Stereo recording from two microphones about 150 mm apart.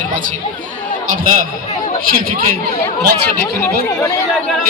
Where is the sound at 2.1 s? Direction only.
70° right (ahead or behind).